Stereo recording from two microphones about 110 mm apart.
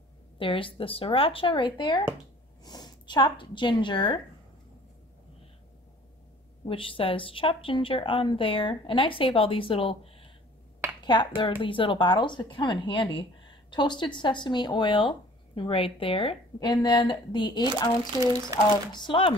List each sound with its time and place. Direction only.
0.4 s a woman's voice: 50° left (ahead or behind)
6.6 s speech: 55° left (ahead or behind)
11.1 s speech: 45° left (ahead or behind)
16.5 s speech: 35° left (ahead or behind)
18.5 s speech: 30° right (ahead or behind)
18.9 s speech: 45° left (ahead or behind)